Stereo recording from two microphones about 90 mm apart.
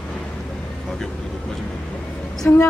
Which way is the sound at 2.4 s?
20° left (ahead or behind).